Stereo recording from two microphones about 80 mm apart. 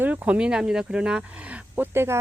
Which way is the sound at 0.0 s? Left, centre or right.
Centre.